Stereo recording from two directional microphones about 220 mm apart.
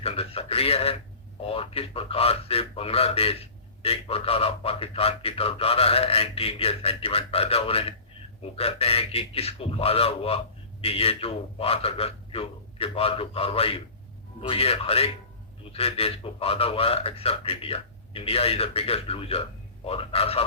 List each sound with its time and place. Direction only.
0.0 s a man's voice: 25° left (ahead or behind)